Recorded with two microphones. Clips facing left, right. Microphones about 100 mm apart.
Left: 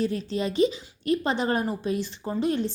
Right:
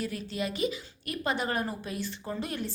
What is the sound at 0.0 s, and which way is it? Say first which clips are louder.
A woman's voice: left 6 dB; 30° left (ahead or behind).